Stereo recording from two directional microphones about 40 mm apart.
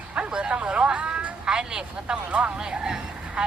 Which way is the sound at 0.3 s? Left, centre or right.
Right.